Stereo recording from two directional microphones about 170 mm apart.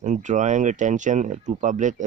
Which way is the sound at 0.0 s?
45° right (ahead or behind).